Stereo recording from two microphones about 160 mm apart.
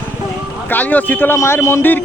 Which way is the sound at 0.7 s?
10° left (ahead or behind).